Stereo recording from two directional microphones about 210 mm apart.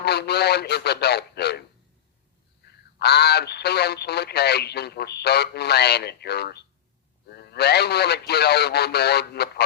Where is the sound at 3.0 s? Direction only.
50° left (ahead or behind).